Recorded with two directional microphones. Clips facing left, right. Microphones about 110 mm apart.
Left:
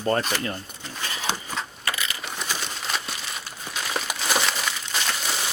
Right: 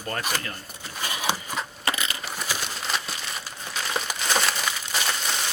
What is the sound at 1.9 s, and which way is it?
Coin, 25° right (ahead or behind).